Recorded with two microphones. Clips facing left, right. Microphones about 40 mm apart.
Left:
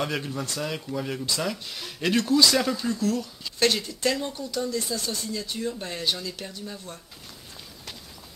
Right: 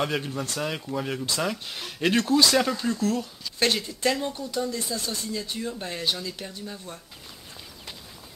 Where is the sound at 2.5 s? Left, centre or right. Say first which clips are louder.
Right 1 dB; centre.